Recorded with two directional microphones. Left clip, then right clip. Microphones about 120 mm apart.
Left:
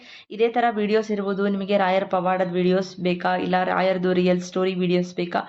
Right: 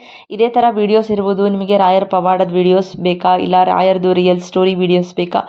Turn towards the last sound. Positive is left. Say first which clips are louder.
# right 9 dB
turn(degrees=-50)  # may be behind; listen again after turning